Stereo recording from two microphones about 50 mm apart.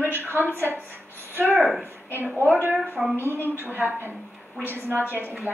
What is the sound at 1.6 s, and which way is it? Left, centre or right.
Speech, centre.